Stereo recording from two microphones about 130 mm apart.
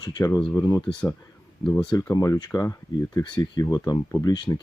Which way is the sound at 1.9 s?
25° left (ahead or behind).